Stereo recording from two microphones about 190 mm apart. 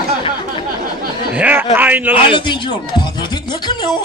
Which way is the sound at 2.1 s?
25° left (ahead or behind).